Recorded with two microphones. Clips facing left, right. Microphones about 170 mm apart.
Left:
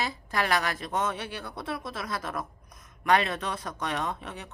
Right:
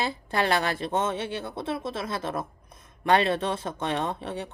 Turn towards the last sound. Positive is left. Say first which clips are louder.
# right 4 dB
turn(degrees=-30)  # may be behind; listen again after turning